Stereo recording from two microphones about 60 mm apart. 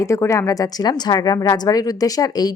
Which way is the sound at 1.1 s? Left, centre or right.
Left.